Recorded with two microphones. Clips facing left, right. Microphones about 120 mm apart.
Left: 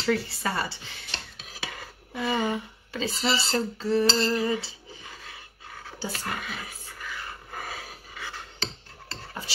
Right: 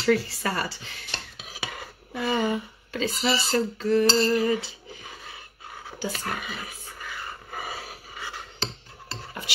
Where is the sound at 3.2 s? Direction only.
30° left (ahead or behind).